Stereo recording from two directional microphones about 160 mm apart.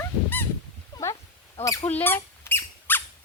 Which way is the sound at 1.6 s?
20° left (ahead or behind).